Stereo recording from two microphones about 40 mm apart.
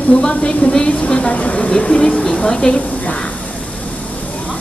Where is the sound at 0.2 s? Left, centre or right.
Left.